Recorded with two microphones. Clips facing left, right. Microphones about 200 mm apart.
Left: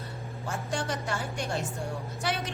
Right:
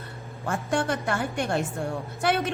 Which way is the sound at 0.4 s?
55° right (ahead or behind).